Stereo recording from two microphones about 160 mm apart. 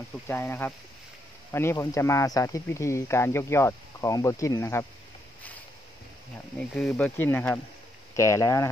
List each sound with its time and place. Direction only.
0.3 s speech: 15° left (ahead or behind)
6.7 s speech: 5° left (ahead or behind)